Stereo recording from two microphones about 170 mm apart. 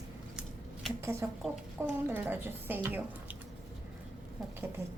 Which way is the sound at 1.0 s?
15° right (ahead or behind).